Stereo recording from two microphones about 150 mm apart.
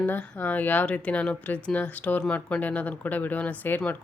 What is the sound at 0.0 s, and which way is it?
Speech, 10° left (ahead or behind).